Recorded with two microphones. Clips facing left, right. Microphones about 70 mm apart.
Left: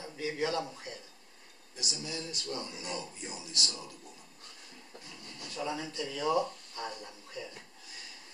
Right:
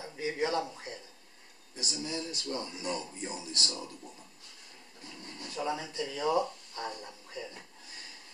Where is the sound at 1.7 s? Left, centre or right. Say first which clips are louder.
Right 3 dB; right.